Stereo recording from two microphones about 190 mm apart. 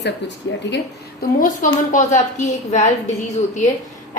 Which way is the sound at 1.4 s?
40° left (ahead or behind).